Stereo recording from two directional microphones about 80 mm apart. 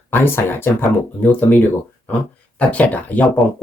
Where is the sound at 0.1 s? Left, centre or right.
Left.